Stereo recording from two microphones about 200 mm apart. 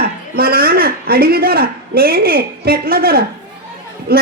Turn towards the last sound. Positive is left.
turn(degrees=-50)  # may be behind; listen again after turning